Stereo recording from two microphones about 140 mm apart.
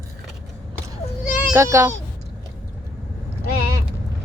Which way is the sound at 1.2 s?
70° left (ahead or behind).